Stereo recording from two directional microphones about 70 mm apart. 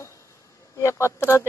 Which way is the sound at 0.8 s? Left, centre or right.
Left.